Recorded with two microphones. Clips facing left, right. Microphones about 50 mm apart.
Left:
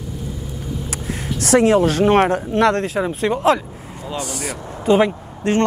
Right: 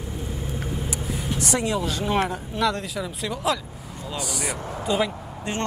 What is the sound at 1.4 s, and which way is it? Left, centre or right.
Speech, left.